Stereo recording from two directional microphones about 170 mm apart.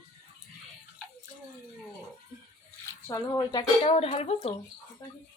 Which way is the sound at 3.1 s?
20° left (ahead or behind).